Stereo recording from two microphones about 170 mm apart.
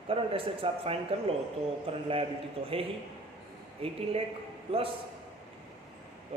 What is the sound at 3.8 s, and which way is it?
A man's voice, 35° right (ahead or behind).